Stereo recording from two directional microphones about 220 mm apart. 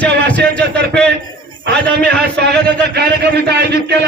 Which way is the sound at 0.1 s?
50° right (ahead or behind).